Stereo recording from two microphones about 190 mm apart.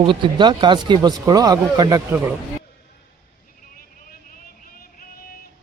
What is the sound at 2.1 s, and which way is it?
Speech, 10° right (ahead or behind).